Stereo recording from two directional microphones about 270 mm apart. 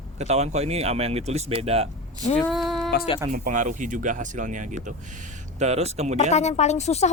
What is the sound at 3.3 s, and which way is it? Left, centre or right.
Speech, right.